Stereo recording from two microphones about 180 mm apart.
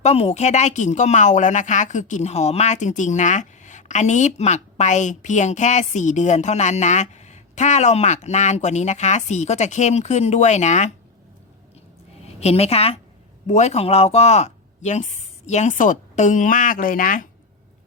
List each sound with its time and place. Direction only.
0.0 s speech: 35° left (ahead or behind)
12.2 s a woman's voice: 35° left (ahead or behind)